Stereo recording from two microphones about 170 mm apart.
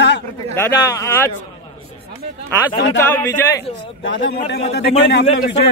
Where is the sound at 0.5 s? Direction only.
15° left (ahead or behind).